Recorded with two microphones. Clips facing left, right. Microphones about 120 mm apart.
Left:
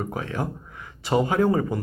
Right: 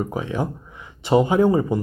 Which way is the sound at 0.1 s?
20° right (ahead or behind).